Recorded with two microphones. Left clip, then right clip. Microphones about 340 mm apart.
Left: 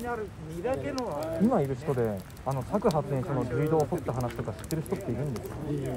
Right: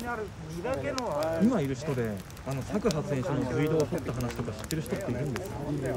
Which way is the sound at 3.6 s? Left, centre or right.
Centre.